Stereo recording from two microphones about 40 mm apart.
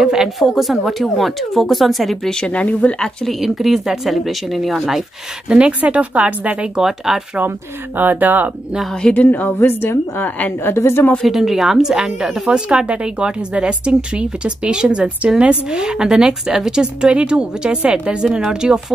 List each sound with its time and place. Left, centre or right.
0.0 s speech: centre
0.4 s speech: centre
2.2 s speech: left
2.6 s speech: left
3.3 s speech: centre
5.7 s speech: right
6.8 s speech: centre
7.4 s speech: right
9.1 s a woman's voice: left
10.6 s a woman's voice: left
11.2 s a woman's voice: centre